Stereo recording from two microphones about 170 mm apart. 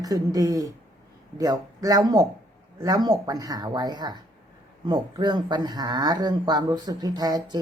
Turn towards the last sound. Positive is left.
turn(degrees=-25)  # may be behind; listen again after turning